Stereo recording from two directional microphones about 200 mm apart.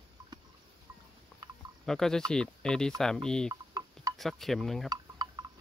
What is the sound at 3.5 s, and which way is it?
Telephone dialing, 20° right (ahead or behind).